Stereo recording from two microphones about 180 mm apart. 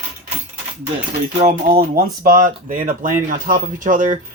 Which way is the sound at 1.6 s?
55° right (ahead or behind).